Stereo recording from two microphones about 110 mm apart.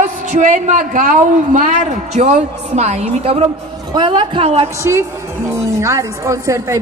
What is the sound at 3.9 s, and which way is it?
Speech, 45° right (ahead or behind).